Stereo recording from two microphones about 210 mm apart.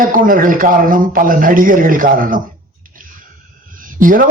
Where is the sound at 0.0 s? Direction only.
40° right (ahead or behind).